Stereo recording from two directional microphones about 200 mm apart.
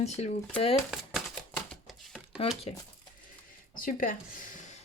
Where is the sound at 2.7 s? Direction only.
30° left (ahead or behind).